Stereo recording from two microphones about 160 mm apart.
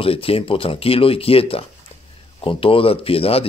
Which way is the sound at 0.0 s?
35° left (ahead or behind).